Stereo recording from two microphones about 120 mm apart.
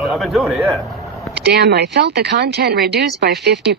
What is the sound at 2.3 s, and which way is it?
Speech, 90° right.